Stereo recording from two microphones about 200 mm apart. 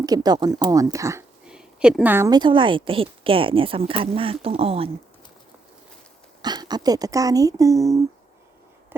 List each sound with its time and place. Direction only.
0.0 s a woman's voice: 20° right (ahead or behind)
1.5 s a woman's voice: 5° right (ahead or behind); by 4.9 s 30° right (ahead or behind)
6.4 s speech: 20° right (ahead or behind)